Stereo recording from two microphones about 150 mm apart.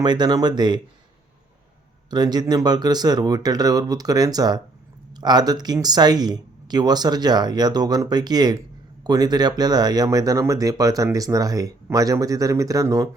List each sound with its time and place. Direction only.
0.0 s speech: 30° right (ahead or behind)
2.0 s speech: 30° right (ahead or behind)